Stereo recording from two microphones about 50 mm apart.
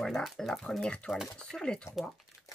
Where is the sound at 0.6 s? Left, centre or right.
Centre.